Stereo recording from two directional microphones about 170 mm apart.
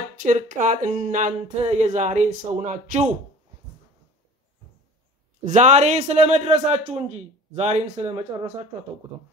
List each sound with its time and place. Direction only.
0.2 s speech: 50° right (ahead or behind)
5.4 s a man's voice: 45° right (ahead or behind)